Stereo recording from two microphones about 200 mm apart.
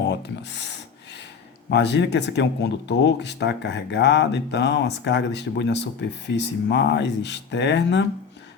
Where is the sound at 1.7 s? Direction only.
60° left (ahead or behind).